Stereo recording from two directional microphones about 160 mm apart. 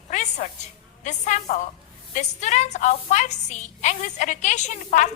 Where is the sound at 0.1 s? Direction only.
50° left (ahead or behind).